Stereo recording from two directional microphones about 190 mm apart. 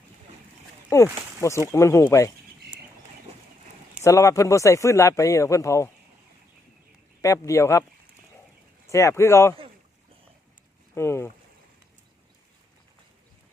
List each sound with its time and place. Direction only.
0.9 s a man's voice: 15° left (ahead or behind)
3.3 s clip-clop: 35° right (ahead or behind)
4.0 s a man's voice: 15° left (ahead or behind)
7.2 s a man's voice: 15° left (ahead or behind)
8.9 s a man's voice: 15° left (ahead or behind)
10.9 s a man's voice: 15° left (ahead or behind)